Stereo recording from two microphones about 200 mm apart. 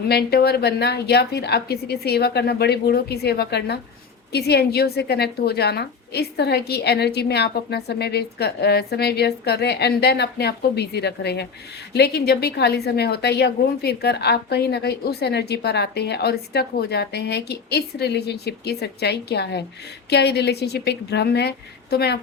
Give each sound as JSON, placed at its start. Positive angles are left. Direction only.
{"t": 0.1, "sound": "a woman's voice", "side_deg": 55}